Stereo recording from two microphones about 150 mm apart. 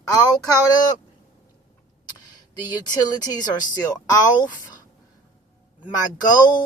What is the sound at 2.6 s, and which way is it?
Speech, 30° left (ahead or behind).